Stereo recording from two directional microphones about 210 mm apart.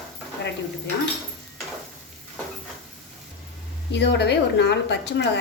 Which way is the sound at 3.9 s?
55° left (ahead or behind).